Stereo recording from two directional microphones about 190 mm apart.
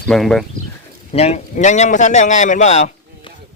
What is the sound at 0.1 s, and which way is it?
Speech, centre (ahead or behind).